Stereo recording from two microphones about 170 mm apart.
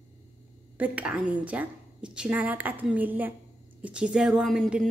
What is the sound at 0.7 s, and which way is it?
A woman's voice, 10° right (ahead or behind).